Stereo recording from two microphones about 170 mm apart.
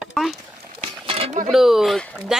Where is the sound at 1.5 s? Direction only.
Centre (ahead or behind).